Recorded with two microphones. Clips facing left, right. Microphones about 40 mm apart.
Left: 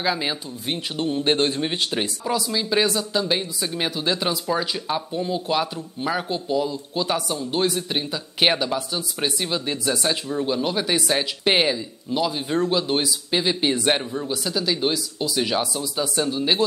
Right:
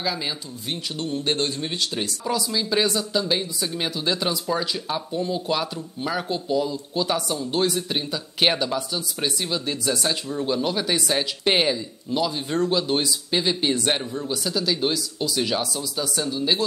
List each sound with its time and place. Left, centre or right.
0.0 s speech: left
2.2 s speech: centre